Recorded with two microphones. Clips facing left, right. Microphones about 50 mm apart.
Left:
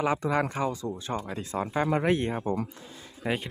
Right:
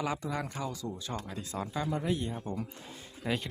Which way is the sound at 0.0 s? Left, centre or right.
Left.